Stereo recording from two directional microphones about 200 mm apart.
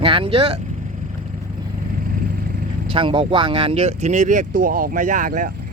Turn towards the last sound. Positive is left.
turn(degrees=-40)  # may be behind; listen again after turning